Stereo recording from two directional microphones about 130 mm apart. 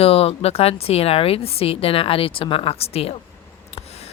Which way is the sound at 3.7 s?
55° left (ahead or behind).